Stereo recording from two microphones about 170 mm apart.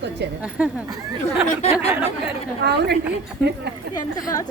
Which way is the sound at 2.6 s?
75° right (ahead or behind).